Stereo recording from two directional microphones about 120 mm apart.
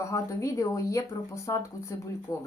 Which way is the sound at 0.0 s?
25° left (ahead or behind).